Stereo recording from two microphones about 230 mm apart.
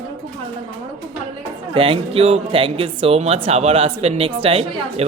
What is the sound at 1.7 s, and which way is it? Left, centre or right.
Speech, right.